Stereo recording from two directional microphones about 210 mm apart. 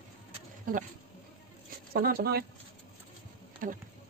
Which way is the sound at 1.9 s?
45° right (ahead or behind).